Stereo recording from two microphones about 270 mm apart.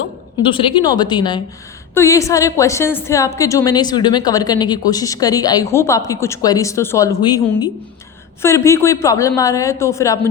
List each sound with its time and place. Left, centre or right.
0.4 s a woman's voice: centre